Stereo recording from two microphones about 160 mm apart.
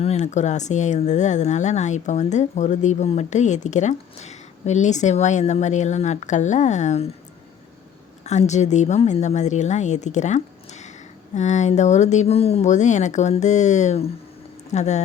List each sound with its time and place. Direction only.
0.0 s speech: 45° left (ahead or behind)
8.2 s speech: 45° left (ahead or behind)